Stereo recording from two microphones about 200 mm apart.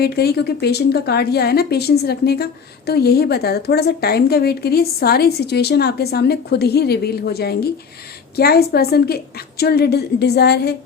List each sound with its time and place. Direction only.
0.0 s a woman's voice: 50° left (ahead or behind)